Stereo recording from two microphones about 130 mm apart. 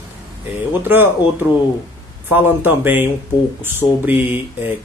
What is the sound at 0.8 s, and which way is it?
Speech, 15° right (ahead or behind).